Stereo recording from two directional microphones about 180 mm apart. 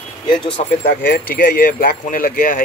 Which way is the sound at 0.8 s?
60° left (ahead or behind).